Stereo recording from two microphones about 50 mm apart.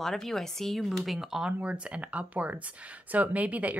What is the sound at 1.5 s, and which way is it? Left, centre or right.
Speech, right.